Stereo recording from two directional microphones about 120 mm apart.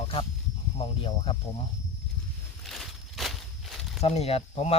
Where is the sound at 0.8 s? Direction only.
50° left (ahead or behind).